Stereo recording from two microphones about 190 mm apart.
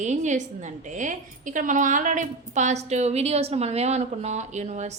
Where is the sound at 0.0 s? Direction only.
40° right (ahead or behind).